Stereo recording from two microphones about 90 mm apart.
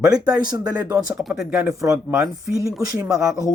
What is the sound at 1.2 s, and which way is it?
Speech, centre (ahead or behind).